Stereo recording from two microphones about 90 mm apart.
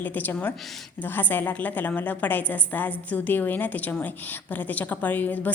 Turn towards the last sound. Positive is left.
turn(degrees=20)  # may be behind; listen again after turning